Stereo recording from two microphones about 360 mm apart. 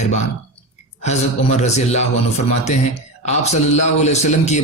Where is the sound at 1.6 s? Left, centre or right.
Centre.